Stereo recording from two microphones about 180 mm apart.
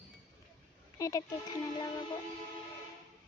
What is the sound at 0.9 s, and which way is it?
Oink, 20° left (ahead or behind).